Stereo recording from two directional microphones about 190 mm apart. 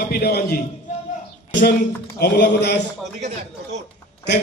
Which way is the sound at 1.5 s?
65° left (ahead or behind).